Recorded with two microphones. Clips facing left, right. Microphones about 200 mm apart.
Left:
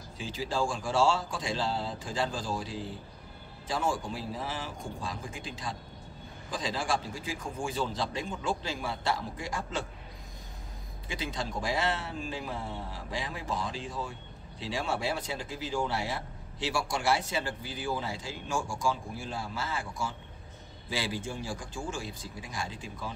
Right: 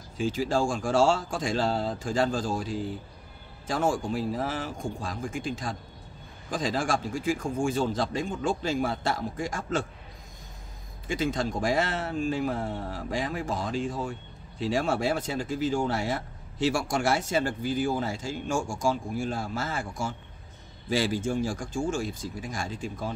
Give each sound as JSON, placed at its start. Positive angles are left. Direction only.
{"t": 0.2, "sound": "speech", "side_deg": -45}
{"t": 11.1, "sound": "speech", "side_deg": -45}